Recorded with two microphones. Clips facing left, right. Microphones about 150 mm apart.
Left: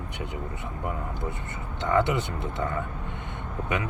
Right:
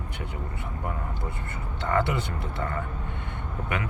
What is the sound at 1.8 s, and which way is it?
Speech, 20° left (ahead or behind).